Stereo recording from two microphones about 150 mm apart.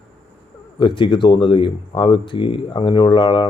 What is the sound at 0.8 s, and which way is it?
Speech, 35° left (ahead or behind).